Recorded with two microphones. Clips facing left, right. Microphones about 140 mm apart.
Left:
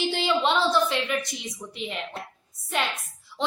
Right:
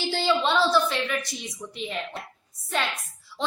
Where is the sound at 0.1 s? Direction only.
20° left (ahead or behind).